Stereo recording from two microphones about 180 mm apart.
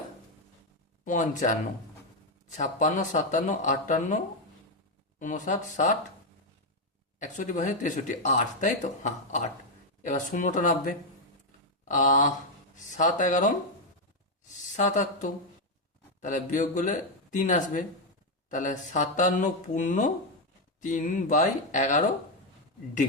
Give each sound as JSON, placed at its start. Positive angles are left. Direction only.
{"t": 1.0, "sound": "speech", "side_deg": 45}
{"t": 5.2, "sound": "speech", "side_deg": 45}
{"t": 7.2, "sound": "speech", "side_deg": 45}
{"t": 14.7, "sound": "a woman's voice", "side_deg": 40}